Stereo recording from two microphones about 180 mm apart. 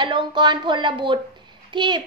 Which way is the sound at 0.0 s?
25° right (ahead or behind).